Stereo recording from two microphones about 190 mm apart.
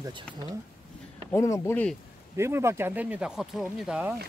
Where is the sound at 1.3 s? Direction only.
15° left (ahead or behind).